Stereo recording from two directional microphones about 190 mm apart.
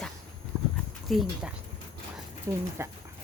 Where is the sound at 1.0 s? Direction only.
Centre (ahead or behind).